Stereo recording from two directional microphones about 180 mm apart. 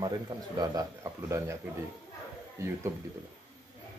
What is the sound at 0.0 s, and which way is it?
A man's voice, 20° right (ahead or behind).